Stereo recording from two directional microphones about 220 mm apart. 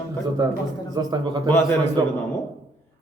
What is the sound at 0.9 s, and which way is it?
Speech, 20° right (ahead or behind).